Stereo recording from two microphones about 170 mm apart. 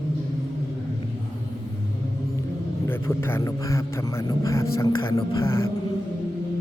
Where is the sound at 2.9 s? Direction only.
15° left (ahead or behind).